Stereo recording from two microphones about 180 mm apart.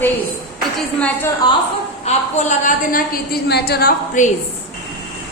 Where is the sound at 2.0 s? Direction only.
40° left (ahead or behind).